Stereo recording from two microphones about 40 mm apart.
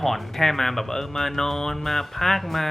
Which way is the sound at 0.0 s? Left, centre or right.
Centre.